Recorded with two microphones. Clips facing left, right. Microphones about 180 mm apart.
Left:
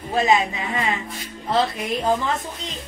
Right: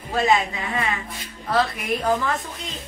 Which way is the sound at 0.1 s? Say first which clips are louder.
Left 1 dB; 20° left (ahead or behind).